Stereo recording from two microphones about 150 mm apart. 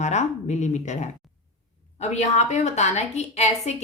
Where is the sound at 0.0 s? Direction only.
50° left (ahead or behind).